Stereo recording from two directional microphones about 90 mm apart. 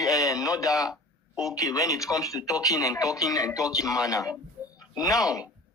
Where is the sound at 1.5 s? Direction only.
40° left (ahead or behind).